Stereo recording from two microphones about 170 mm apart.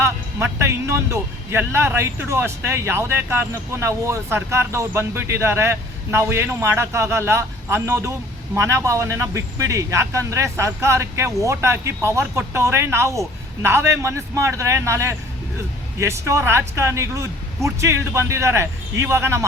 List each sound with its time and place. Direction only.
0.0 s speech: 15° right (ahead or behind)